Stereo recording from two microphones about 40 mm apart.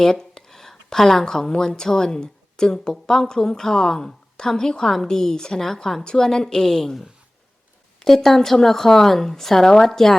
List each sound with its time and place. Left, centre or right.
0.0 s a sound: centre
1.2 s a woman's voice: centre
8.0 s a woman's voice: centre